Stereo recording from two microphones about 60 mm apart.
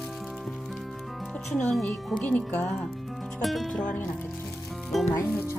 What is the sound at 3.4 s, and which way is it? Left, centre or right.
Speech, centre.